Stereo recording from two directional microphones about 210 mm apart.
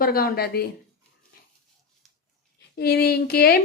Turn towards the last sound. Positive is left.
turn(degrees=45)  # may be behind; listen again after turning